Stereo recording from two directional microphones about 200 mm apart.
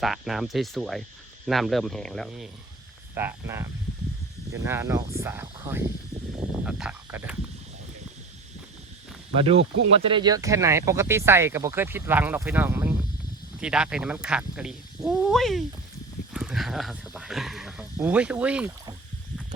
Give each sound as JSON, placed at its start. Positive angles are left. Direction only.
{"t": 0.0, "sound": "speech", "side_deg": 0}
{"t": 3.2, "sound": "speech", "side_deg": -10}
{"t": 9.4, "sound": "speech", "side_deg": -30}
{"t": 16.3, "sound": "a sound", "side_deg": -5}
{"t": 17.9, "sound": "speech", "side_deg": -10}